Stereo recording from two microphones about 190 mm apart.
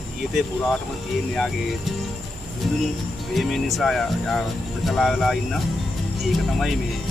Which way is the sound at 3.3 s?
Centre (ahead or behind).